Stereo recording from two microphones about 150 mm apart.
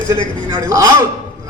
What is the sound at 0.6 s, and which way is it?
Speech, 20° right (ahead or behind).